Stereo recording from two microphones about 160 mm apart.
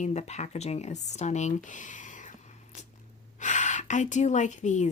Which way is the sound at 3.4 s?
50° left (ahead or behind).